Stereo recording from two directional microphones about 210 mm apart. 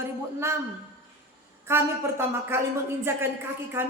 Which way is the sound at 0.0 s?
10° right (ahead or behind).